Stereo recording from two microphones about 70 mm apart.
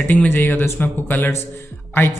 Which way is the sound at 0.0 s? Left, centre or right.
Left.